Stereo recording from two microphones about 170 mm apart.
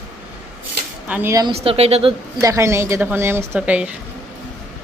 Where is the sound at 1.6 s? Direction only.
35° right (ahead or behind).